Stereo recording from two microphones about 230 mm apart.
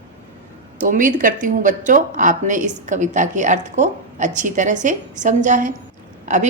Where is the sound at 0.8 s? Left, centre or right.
Right.